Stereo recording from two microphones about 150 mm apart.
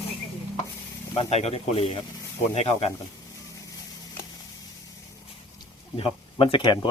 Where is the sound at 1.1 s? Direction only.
40° left (ahead or behind).